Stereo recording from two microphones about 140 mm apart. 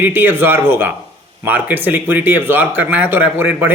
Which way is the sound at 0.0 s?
15° right (ahead or behind).